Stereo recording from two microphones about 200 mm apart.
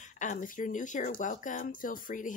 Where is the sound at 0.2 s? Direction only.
40° left (ahead or behind).